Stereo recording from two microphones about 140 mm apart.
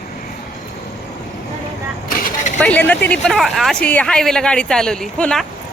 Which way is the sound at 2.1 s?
80° left.